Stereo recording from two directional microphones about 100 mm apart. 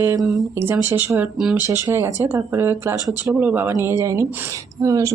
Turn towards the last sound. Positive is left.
turn(degrees=-35)  # may be behind; listen again after turning